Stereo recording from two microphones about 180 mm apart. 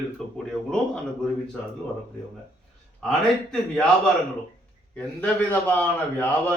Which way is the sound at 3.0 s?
5° left (ahead or behind).